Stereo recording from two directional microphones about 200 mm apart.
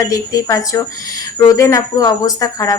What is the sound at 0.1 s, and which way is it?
Speech, 15° left (ahead or behind).